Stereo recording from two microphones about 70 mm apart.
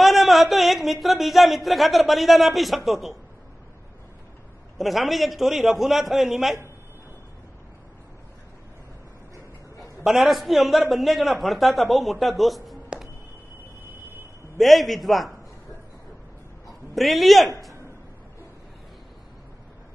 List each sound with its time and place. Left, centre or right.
0.0 s speech: centre
4.7 s speech: centre
10.0 s speech: centre
14.6 s speech: centre
16.9 s speech: centre